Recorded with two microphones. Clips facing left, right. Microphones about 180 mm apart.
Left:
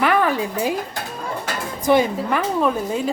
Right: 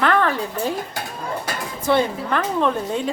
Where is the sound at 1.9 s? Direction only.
10° left (ahead or behind).